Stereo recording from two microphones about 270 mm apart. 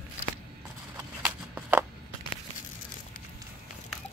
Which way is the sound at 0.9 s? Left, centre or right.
Centre.